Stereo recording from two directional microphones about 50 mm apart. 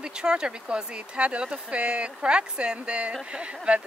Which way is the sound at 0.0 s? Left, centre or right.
Centre.